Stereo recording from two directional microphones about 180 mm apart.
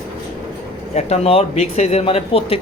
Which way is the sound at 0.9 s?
35° left (ahead or behind).